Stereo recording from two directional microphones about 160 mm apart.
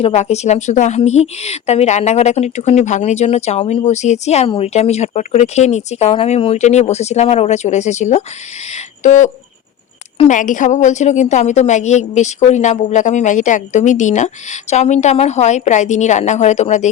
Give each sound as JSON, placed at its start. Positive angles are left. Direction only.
{"t": 0.0, "sound": "a woman's voice", "side_deg": 45}